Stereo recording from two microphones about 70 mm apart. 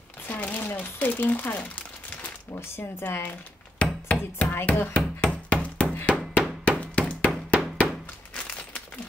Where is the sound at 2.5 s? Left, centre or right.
Left.